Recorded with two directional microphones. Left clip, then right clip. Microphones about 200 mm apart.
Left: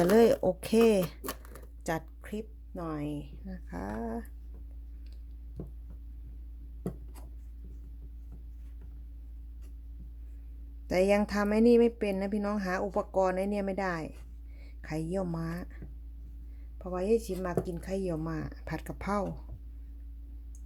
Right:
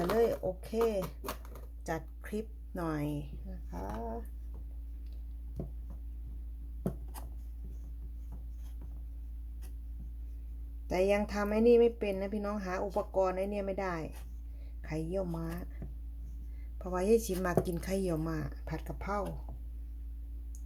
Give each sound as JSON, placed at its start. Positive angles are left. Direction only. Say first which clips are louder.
{"t": 0.0, "sound": "speech", "louder": "left 7 dB", "side_deg": 45}
{"t": 1.2, "sound": "a sound", "louder": "left 1 dB", "side_deg": 30}
{"t": 2.2, "sound": "speech", "louder": "right 1 dB", "side_deg": 10}
{"t": 2.7, "sound": "speech", "louder": "even", "side_deg": 0}
{"t": 3.5, "sound": "speech", "louder": "left 3 dB", "side_deg": 35}
{"t": 10.8, "sound": "speech", "louder": "left 3 dB", "side_deg": 25}
{"t": 16.7, "sound": "a woman's voice", "louder": "even", "side_deg": 5}
{"t": 18.3, "sound": "speech", "louder": "left 2 dB", "side_deg": 20}